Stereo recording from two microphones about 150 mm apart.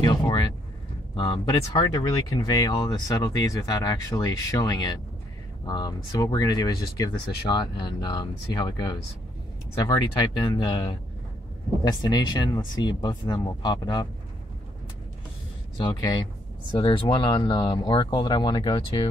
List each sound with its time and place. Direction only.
0.0 s a sound: 30° left (ahead or behind)
1.1 s speech: 30° left (ahead or behind)
10.2 s speech: 30° left (ahead or behind)
15.8 s speech: 30° left (ahead or behind)